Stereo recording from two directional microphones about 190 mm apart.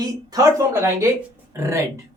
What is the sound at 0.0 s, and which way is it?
Speech, 20° right (ahead or behind).